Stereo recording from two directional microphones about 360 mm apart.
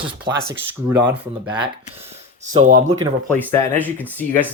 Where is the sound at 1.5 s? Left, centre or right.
Centre.